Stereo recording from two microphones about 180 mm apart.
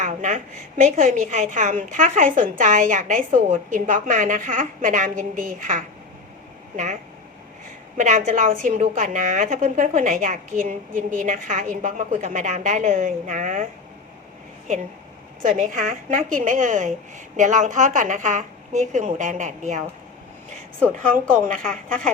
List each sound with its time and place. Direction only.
0.0 s a woman's voice: 45° right (ahead or behind)
7.9 s a woman's voice: 45° right (ahead or behind)
15.4 s a woman's voice: 45° right (ahead or behind)
21.1 s a woman's voice: 50° right (ahead or behind)